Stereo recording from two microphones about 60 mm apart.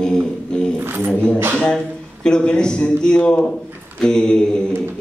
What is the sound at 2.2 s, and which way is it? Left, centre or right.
A man's voice, centre.